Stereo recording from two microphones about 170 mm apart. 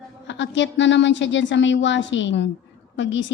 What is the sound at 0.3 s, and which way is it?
A woman's voice, 90° left.